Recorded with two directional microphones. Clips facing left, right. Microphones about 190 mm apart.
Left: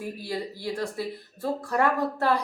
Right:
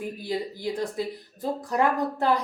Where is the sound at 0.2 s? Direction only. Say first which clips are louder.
Right 2 dB; 20° right (ahead or behind).